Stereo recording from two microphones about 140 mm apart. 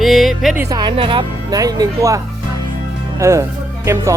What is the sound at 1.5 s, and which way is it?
Speech, 25° right (ahead or behind).